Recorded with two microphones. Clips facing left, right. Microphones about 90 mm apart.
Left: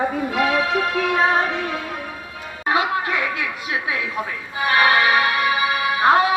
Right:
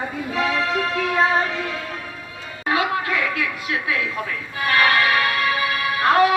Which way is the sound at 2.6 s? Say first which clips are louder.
Left 1 dB; 25° left (ahead or behind).